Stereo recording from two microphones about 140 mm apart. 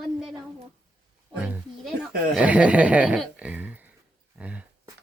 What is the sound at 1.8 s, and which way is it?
A woman's voice, 5° right (ahead or behind).